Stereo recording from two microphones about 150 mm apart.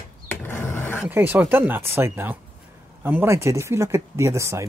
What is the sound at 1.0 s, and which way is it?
Speech, 10° right (ahead or behind).